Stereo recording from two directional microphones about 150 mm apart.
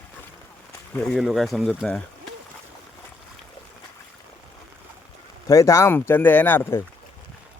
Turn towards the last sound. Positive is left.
turn(degrees=15)  # may be behind; listen again after turning